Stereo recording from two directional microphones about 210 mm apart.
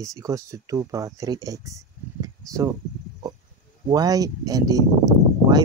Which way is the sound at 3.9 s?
20° right (ahead or behind).